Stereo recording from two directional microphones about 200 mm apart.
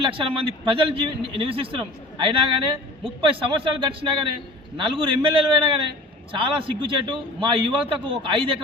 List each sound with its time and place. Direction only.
0.0 s a man's voice: 25° right (ahead or behind)